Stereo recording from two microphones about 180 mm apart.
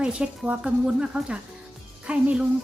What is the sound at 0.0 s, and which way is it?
Speech, 5° right (ahead or behind).